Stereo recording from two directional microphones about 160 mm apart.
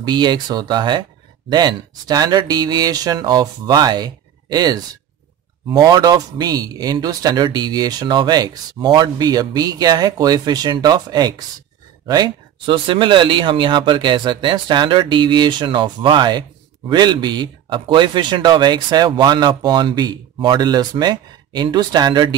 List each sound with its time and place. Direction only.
0.0 s speech: 30° right (ahead or behind)